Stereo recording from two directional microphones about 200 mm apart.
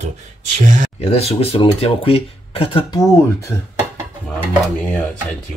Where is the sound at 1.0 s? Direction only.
30° left (ahead or behind).